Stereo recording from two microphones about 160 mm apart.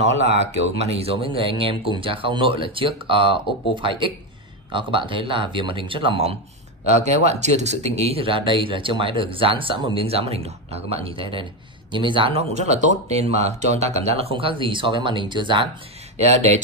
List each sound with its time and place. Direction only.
0.4 s speech: 40° right (ahead or behind)
16.3 s speech: 45° right (ahead or behind)